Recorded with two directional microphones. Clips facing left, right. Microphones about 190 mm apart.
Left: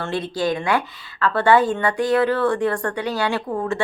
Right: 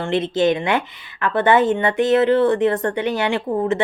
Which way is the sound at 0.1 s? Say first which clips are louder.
Right 6 dB; 20° right (ahead or behind).